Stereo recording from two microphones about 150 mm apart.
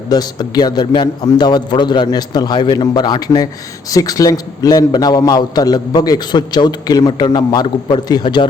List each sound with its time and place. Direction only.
0.1 s a man's voice: 25° left (ahead or behind)